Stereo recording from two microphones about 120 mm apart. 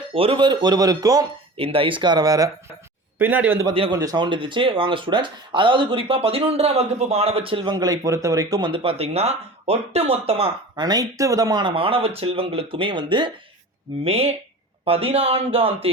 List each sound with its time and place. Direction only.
0.1 s speech: 50° right (ahead or behind); by 1.3 s 30° right (ahead or behind)
1.5 s speech: 50° right (ahead or behind); by 2.5 s 30° right (ahead or behind)
3.2 s a man's voice: 15° right (ahead or behind)
3.9 s speech: 35° right (ahead or behind); by 10.5 s 55° right (ahead or behind)
10.8 s speech: 35° right (ahead or behind)
14.0 s speech: 55° right (ahead or behind)